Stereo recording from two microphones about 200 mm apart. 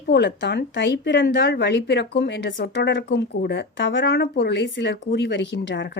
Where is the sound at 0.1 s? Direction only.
55° left (ahead or behind).